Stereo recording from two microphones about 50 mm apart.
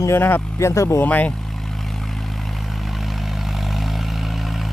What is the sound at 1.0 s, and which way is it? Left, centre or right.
Speech, left.